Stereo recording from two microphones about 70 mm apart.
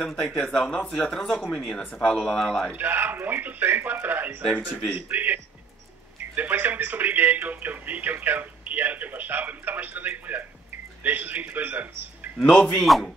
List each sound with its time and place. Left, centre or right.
0.0 s speech: centre
2.7 s speech: right
4.4 s speech: centre
4.9 s a man's voice: right
12.4 s speech: centre